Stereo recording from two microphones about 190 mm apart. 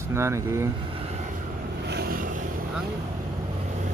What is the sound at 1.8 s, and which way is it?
Vehicle, 60° right (ahead or behind).